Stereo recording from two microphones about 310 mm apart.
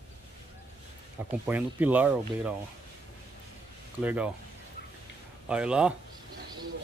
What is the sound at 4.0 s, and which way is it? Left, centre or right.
Speech, centre.